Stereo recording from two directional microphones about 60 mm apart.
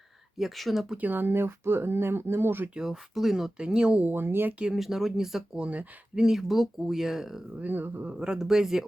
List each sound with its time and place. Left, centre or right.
0.3 s speech: centre
1.0 s speech: right
2.7 s speech: centre
3.6 s speech: centre
4.0 s speech: right
4.7 s speech: centre
5.6 s speech: right
6.1 s speech: centre
7.6 s speech: right
8.0 s speech: centre